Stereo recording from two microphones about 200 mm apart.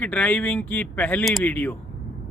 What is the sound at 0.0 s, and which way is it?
Speech, 10° left (ahead or behind).